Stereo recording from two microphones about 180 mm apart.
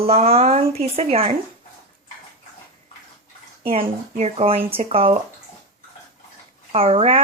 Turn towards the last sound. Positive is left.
turn(degrees=-30)  # may be behind; listen again after turning